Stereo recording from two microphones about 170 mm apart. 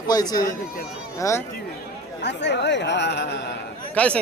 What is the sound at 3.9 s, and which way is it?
Speech, 5° left (ahead or behind).